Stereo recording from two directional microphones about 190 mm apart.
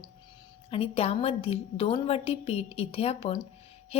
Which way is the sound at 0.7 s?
30° left (ahead or behind).